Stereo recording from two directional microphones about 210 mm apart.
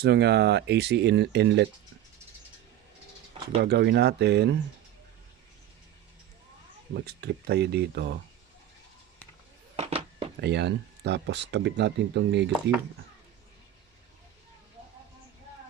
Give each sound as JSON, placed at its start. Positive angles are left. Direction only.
{"t": 0.0, "sound": "speech", "side_deg": -55}
{"t": 3.6, "sound": "speech", "side_deg": -50}
{"t": 6.9, "sound": "speech", "side_deg": -50}
{"t": 9.7, "sound": "a sound", "side_deg": -30}
{"t": 10.4, "sound": "speech", "side_deg": -55}